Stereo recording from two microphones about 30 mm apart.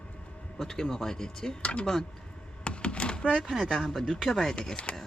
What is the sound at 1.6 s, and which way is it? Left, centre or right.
Speech, left.